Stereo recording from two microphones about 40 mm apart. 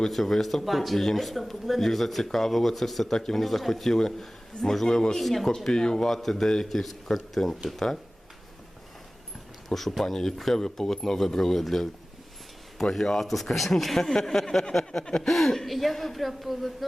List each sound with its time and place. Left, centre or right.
0.1 s speech: centre
5.7 s speech: centre
9.6 s speech: centre